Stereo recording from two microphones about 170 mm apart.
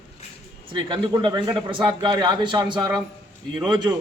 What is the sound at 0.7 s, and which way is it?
A man's voice, 30° right (ahead or behind).